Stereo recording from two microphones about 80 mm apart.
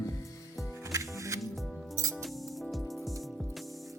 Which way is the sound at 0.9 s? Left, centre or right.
Right.